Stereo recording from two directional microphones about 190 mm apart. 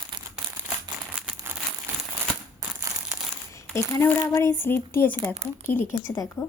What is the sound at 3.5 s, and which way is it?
Speech, 15° left (ahead or behind).